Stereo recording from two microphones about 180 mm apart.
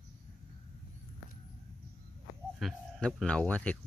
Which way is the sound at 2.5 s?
5° left (ahead or behind).